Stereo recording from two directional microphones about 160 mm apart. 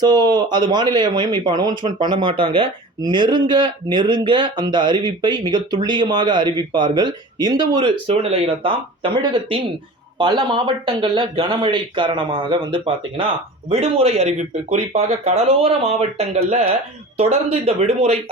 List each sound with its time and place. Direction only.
0.0 s speech: 25° right (ahead or behind)